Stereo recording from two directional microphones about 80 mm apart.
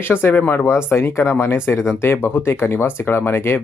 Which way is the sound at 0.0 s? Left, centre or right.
Left.